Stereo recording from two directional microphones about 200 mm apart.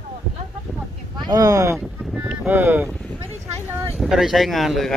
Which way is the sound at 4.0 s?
Centre (ahead or behind).